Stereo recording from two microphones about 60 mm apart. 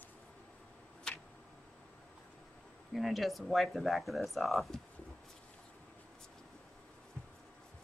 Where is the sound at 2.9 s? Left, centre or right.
Centre.